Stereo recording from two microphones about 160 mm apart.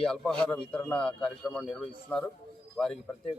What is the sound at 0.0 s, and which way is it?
Speech, 5° left (ahead or behind).